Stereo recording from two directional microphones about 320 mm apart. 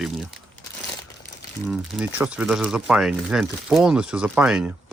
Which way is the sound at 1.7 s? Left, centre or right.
Centre.